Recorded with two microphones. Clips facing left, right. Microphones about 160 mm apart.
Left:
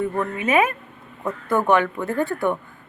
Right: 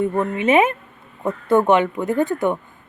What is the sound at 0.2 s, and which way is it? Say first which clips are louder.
Speech: right 4 dB; 25° right (ahead or behind).